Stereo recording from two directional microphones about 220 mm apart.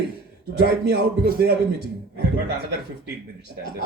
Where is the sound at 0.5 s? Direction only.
50° right (ahead or behind).